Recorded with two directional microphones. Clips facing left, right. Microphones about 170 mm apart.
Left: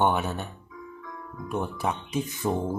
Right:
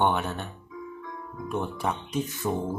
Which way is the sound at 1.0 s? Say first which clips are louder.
Right 1 dB; 25° right (ahead or behind).